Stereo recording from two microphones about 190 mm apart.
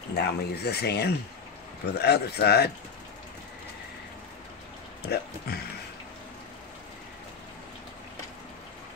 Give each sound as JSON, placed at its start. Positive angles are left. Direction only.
{"t": 0.1, "sound": "speech", "side_deg": 60}
{"t": 5.0, "sound": "speech", "side_deg": 55}